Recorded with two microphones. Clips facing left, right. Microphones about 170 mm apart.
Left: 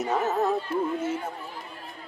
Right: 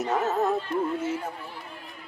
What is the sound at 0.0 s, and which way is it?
Speech, centre (ahead or behind).